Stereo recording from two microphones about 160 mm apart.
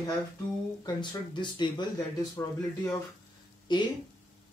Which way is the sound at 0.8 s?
25° left (ahead or behind).